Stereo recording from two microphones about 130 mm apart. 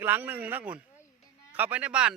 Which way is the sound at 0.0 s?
15° right (ahead or behind).